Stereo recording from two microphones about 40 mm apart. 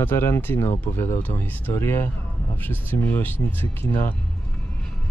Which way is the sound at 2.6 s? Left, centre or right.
Left.